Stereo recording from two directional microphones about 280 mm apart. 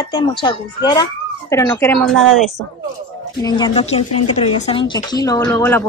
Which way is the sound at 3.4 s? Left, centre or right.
Centre.